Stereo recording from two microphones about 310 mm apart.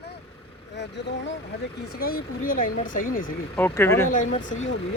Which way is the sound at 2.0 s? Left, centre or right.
Left.